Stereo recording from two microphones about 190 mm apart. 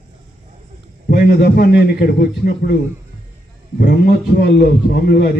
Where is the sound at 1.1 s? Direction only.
60° left (ahead or behind).